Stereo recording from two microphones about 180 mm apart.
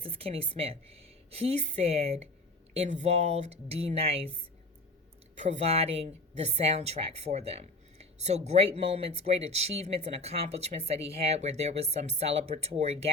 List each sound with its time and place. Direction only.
0.0 s a woman's voice: 30° right (ahead or behind)